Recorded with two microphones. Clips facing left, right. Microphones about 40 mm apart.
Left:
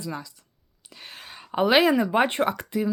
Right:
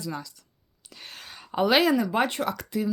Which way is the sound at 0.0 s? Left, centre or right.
Centre.